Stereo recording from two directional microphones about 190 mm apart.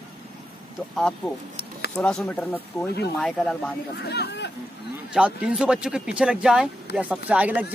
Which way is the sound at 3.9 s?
60° left (ahead or behind).